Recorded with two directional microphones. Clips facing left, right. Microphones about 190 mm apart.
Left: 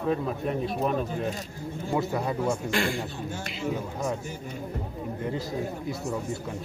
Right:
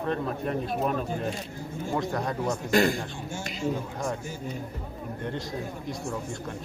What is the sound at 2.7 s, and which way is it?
Speech, 40° right (ahead or behind).